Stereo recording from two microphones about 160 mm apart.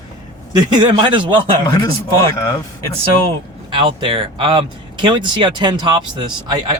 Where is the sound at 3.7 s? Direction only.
30° right (ahead or behind).